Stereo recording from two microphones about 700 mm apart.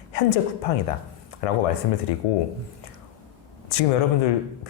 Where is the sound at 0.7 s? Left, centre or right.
Left.